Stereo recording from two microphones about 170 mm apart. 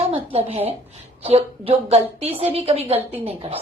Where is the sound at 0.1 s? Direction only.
35° right (ahead or behind).